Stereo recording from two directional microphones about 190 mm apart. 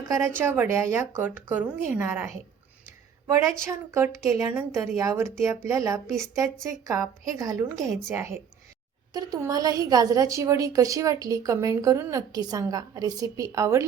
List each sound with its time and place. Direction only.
0.1 s a woman's voice: 15° right (ahead or behind)
3.7 s a woman's voice: 15° right (ahead or behind)